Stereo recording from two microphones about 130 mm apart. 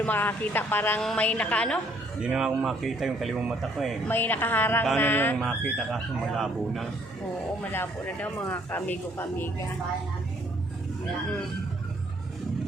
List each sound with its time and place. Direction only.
0.0 s speech: 15° left (ahead or behind)
2.2 s speech: 5° right (ahead or behind)
4.1 s speech: 15° left (ahead or behind)
5.7 s speech: centre (ahead or behind)
7.6 s speech: 15° left (ahead or behind)